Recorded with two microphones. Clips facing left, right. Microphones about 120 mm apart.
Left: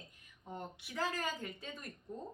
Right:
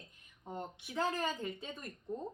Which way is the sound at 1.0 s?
25° right (ahead or behind).